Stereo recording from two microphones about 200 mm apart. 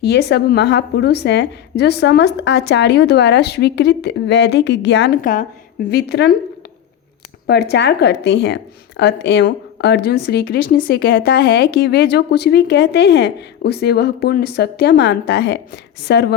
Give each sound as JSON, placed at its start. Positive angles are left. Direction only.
{"t": 0.0, "sound": "speech", "side_deg": 55}
{"t": 5.2, "sound": "a woman's voice", "side_deg": 40}
{"t": 5.9, "sound": "a woman's voice", "side_deg": 55}
{"t": 7.4, "sound": "speech", "side_deg": 55}